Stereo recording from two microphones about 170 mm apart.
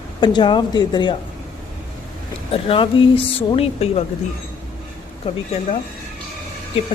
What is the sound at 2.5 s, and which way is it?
Speech, 30° left (ahead or behind).